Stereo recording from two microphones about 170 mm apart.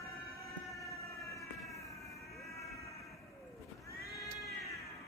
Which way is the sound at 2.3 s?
Centre (ahead or behind).